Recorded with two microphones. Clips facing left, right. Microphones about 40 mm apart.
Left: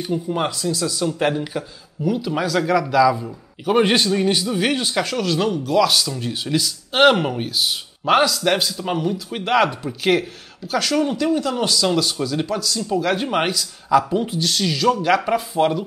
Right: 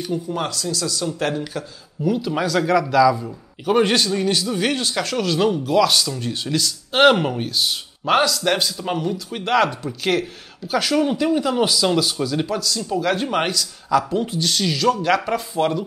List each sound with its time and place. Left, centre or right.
0.0 s speech: centre
2.0 s speech: centre
10.7 s speech: centre